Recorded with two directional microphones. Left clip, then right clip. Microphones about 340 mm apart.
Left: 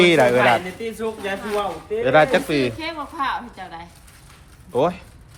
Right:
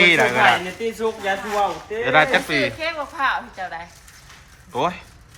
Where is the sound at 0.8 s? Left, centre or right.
Right.